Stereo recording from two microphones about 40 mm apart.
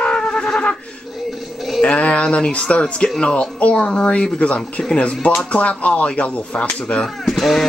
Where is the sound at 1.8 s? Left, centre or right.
Left.